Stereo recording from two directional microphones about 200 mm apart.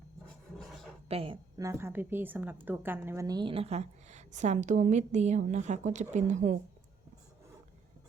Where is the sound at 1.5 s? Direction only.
15° right (ahead or behind); by 6.6 s 35° right (ahead or behind).